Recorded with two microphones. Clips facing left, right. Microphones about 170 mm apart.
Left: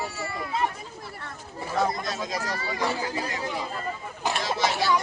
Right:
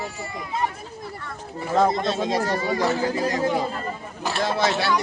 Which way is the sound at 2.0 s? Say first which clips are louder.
Right 8 dB; 25° right (ahead or behind).